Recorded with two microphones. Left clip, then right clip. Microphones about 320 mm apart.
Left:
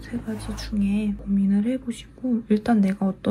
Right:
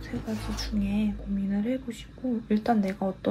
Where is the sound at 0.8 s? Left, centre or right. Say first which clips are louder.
Left 5 dB; left.